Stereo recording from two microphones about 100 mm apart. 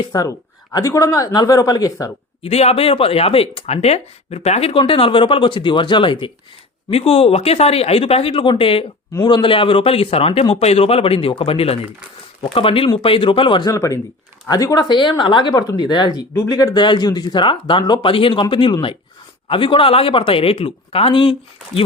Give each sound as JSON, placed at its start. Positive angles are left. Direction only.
{"t": 0.1, "sound": "speech", "side_deg": 40}
{"t": 2.4, "sound": "speech", "side_deg": 90}
{"t": 4.8, "sound": "speech", "side_deg": 65}
{"t": 6.9, "sound": "speech", "side_deg": 75}
{"t": 9.2, "sound": "speech", "side_deg": 55}
{"t": 10.5, "sound": "speech", "side_deg": 90}
{"t": 12.5, "sound": "speech", "side_deg": 65}
{"t": 13.7, "sound": "speech", "side_deg": 30}
{"t": 14.8, "sound": "speech", "side_deg": 50}
{"t": 18.4, "sound": "speech", "side_deg": 50}